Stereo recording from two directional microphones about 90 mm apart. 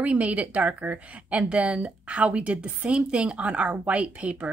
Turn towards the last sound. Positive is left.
turn(degrees=-15)  # may be behind; listen again after turning